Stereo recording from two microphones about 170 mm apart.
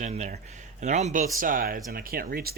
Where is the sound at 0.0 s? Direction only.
45° right (ahead or behind).